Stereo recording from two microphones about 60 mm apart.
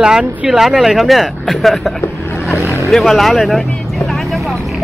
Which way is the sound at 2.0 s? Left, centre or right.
Left.